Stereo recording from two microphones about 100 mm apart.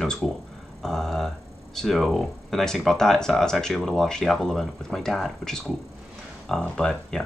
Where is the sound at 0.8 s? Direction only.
Centre (ahead or behind).